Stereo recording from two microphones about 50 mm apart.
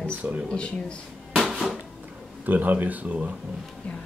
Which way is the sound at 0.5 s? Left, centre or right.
Centre.